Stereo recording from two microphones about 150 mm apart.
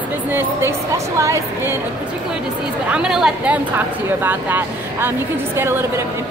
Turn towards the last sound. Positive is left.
turn(degrees=-15)  # may be behind; listen again after turning